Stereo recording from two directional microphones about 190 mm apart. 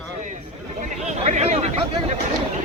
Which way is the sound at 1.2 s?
35° right (ahead or behind).